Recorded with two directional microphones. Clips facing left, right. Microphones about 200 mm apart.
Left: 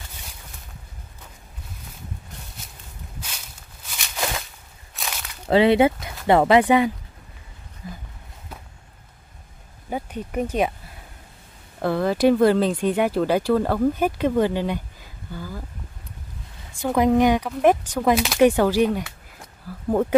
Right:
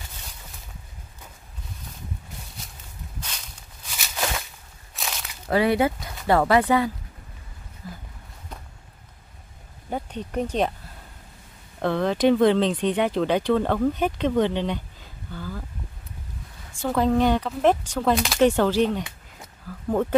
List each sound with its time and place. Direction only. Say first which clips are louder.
3.2 s walk: right 1 dB; 5° left (ahead or behind)
4.9 s a sound: even; centre (ahead or behind)
5.5 s speech: left 5 dB; 25° left (ahead or behind)
9.8 s speech: left 1 dB; 5° left (ahead or behind)
11.8 s speech: left 2 dB; 5° left (ahead or behind)
16.8 s speech: left 3 dB; 15° left (ahead or behind)